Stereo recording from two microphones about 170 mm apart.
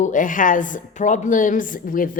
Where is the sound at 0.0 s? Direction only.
50° left (ahead or behind).